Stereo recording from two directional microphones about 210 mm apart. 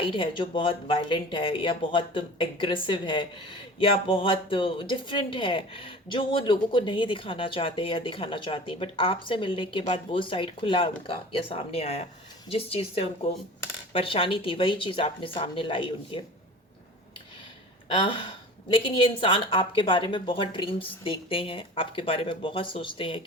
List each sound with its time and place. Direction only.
0.0 s speech: 25° left (ahead or behind)
17.8 s speech: 25° left (ahead or behind)